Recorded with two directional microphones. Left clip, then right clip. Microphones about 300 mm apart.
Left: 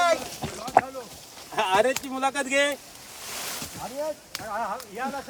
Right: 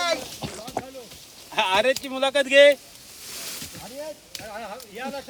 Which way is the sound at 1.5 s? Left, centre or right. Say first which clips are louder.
Right 1 dB; centre.